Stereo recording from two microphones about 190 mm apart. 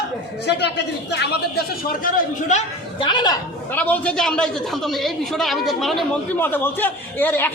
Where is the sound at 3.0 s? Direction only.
20° left (ahead or behind).